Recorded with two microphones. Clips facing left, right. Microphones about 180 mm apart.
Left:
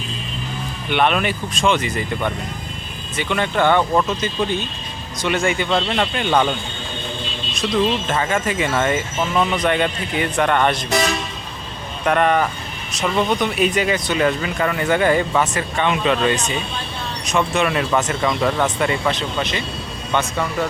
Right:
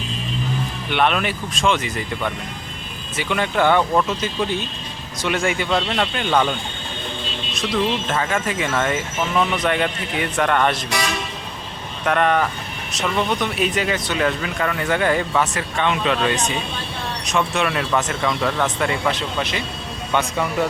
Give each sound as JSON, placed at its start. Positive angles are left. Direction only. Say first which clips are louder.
{"t": 0.9, "sound": "speech", "louder": "left 2 dB", "side_deg": 0}
{"t": 8.1, "sound": "speech", "louder": "left 2 dB", "side_deg": 0}
{"t": 12.0, "sound": "speech", "louder": "left 1 dB", "side_deg": 5}